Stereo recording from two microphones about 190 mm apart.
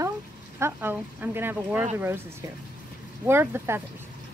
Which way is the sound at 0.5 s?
10° right (ahead or behind).